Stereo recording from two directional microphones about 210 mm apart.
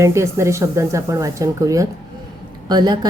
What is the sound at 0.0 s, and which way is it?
A woman's voice, 15° right (ahead or behind).